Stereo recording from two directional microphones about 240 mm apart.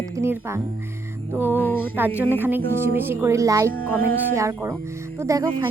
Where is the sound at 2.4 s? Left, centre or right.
Centre.